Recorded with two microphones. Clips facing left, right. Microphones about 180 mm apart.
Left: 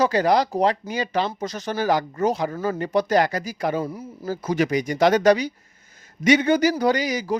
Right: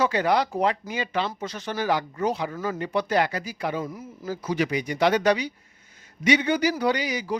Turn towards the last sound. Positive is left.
turn(degrees=45)  # may be behind; listen again after turning